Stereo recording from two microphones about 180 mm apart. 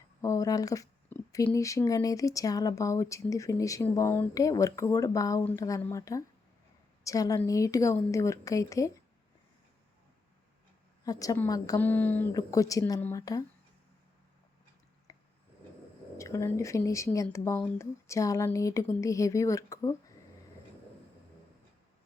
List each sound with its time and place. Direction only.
0.2 s speech: 15° left (ahead or behind)
11.0 s speech: 20° left (ahead or behind)
15.1 s a sound: 20° left (ahead or behind)
16.1 s speech: 15° left (ahead or behind)